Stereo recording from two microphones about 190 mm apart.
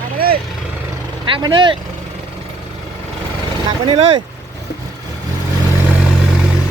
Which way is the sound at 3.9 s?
35° right (ahead or behind).